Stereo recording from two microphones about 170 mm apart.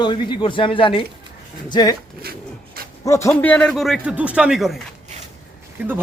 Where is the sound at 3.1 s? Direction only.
15° left (ahead or behind); by 4.8 s centre (ahead or behind).